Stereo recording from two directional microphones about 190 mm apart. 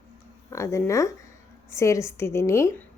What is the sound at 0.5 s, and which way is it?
A woman's voice, 15° left (ahead or behind).